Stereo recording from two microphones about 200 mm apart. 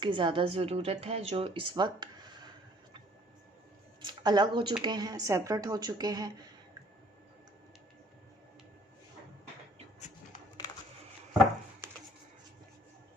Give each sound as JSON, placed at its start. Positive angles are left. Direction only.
{"t": 0.0, "sound": "a woman's voice", "side_deg": -25}
{"t": 4.0, "sound": "a woman's voice", "side_deg": -20}
{"t": 11.8, "sound": "a sound", "side_deg": -15}